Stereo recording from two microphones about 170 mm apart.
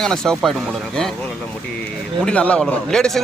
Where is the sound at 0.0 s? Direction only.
5° left (ahead or behind).